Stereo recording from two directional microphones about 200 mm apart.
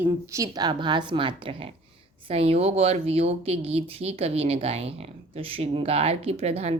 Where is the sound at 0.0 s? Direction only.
15° right (ahead or behind).